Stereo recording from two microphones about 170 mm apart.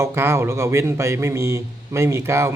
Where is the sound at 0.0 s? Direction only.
15° right (ahead or behind).